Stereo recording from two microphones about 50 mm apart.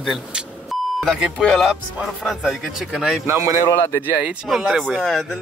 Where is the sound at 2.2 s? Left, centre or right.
Centre.